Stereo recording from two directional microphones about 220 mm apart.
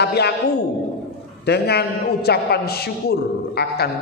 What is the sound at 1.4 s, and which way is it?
A man's voice, 50° left (ahead or behind).